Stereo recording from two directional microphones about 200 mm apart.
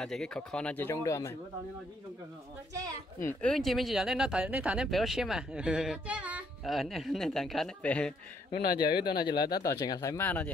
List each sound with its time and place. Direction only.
0.0 s speech: 5° left (ahead or behind)
3.2 s speech: 10° left (ahead or behind)
8.5 s speech: 50° left (ahead or behind)
9.6 s speech: 20° left (ahead or behind)